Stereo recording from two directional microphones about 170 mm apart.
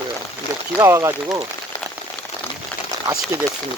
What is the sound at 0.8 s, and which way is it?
Speech, 15° right (ahead or behind).